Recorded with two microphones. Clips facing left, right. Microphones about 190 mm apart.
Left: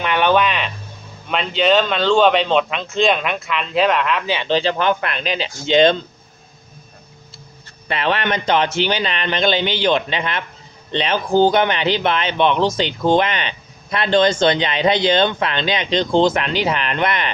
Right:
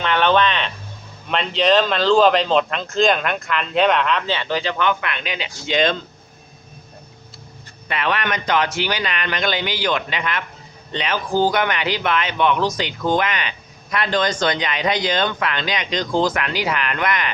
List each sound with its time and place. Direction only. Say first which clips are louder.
0.0 s a sound: left 1 dB; 10° left (ahead or behind)
1.3 s speech: left 1 dB; centre (ahead or behind)
4.4 s speech: left 6 dB; 30° left (ahead or behind)
7.9 s speech: left 3 dB; 30° left (ahead or behind)